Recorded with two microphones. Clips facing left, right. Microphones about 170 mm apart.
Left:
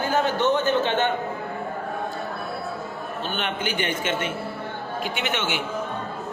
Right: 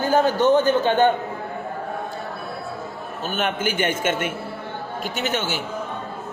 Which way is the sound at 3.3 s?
45° right (ahead or behind).